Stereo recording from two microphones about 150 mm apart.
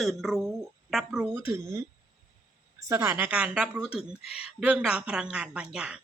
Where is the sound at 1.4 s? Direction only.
20° right (ahead or behind).